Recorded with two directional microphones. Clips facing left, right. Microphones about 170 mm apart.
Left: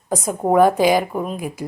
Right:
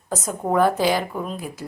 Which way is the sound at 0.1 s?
15° left (ahead or behind).